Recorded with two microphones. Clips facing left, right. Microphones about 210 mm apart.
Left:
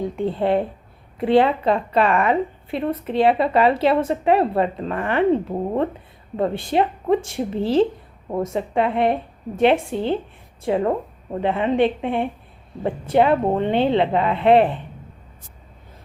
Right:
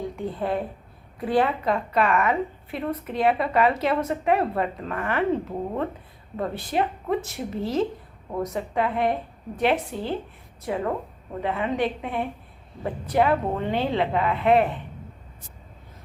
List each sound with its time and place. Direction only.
0.2 s a woman's voice: 25° left (ahead or behind)
6.3 s a woman's voice: 25° left (ahead or behind)